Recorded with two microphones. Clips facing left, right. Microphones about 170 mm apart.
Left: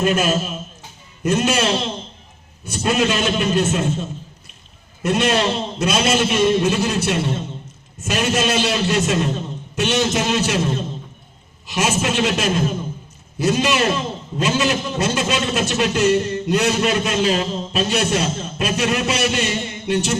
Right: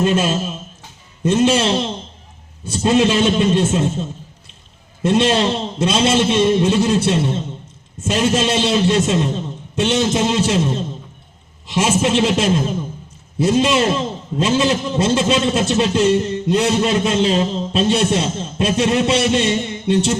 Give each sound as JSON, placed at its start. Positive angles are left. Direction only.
{"t": 0.0, "sound": "a man's voice", "side_deg": -25}
{"t": 5.0, "sound": "a man's voice", "side_deg": -25}